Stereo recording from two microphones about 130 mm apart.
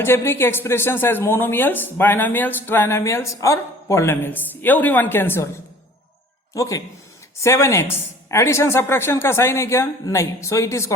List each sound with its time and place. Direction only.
0.0 s a woman's voice: 20° left (ahead or behind)
6.5 s speech: 25° left (ahead or behind)